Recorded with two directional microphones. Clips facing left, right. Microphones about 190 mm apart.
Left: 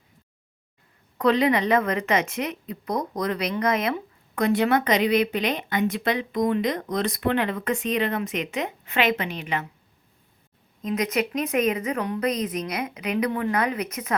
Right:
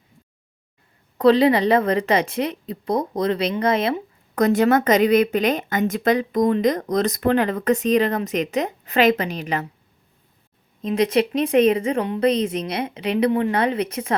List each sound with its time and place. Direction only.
1.2 s speech: 30° right (ahead or behind)
4.4 s a woman's voice: 40° right (ahead or behind)
10.8 s a woman's voice: 30° right (ahead or behind)